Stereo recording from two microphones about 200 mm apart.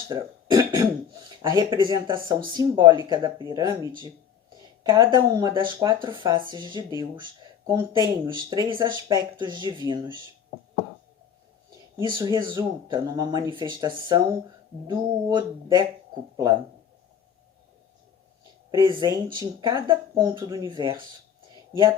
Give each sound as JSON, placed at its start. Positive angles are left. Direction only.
{"t": 0.1, "sound": "throat clearing", "side_deg": -15}
{"t": 1.4, "sound": "speech", "side_deg": -20}
{"t": 12.0, "sound": "speech", "side_deg": -20}
{"t": 18.7, "sound": "speech", "side_deg": -20}